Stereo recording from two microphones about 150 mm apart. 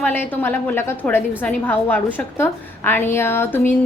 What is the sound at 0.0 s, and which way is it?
A woman's voice, 15° left (ahead or behind).